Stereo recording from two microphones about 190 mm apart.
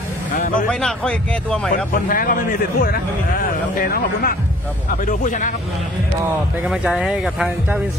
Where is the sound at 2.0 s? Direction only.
50° left (ahead or behind).